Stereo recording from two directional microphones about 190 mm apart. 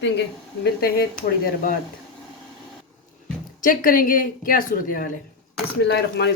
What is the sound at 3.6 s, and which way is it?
A woman's voice, 45° left (ahead or behind).